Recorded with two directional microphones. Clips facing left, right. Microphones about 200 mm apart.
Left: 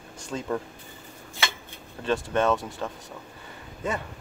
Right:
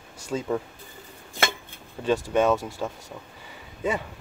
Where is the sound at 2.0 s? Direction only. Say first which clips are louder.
Right 2 dB; 10° right (ahead or behind).